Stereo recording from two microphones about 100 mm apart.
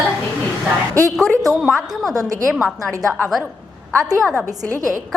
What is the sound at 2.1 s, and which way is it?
Speech, 35° right (ahead or behind).